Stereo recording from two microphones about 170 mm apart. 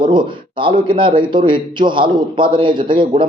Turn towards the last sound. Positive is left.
turn(degrees=-30)  # may be behind; listen again after turning